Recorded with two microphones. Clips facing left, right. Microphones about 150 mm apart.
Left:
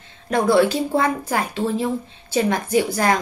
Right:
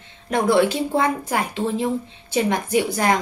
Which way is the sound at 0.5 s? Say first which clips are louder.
Left 1 dB; 20° right (ahead or behind).